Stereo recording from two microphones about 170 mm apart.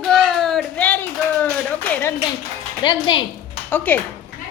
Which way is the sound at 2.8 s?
25° left (ahead or behind).